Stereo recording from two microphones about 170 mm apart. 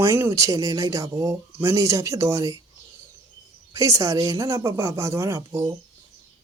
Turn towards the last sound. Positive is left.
turn(degrees=-15)  # may be behind; listen again after turning